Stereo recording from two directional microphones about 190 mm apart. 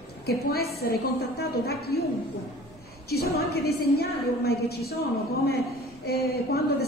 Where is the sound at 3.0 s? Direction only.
55° left (ahead or behind).